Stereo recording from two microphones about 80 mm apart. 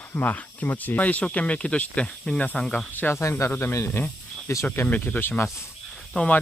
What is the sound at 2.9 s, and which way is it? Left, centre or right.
Speech, left.